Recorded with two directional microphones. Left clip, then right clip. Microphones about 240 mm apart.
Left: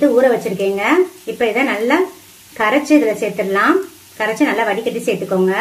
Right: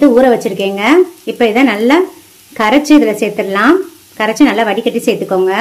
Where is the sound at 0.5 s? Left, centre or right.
Right.